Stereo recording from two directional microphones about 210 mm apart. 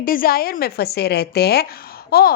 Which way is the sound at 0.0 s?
45° left (ahead or behind).